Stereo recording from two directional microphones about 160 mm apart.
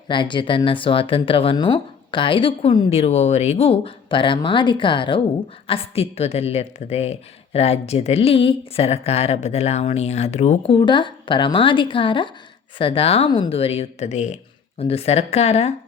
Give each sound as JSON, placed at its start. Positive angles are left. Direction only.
{"t": 0.1, "sound": "a woman's voice", "side_deg": 30}